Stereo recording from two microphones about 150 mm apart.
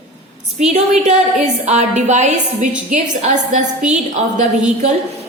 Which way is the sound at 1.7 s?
50° right (ahead or behind).